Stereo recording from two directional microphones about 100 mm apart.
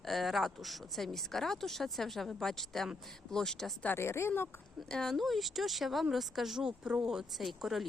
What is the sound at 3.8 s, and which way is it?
Speech, 25° left (ahead or behind).